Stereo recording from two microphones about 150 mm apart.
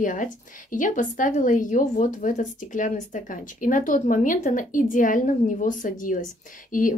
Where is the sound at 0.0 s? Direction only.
60° left (ahead or behind).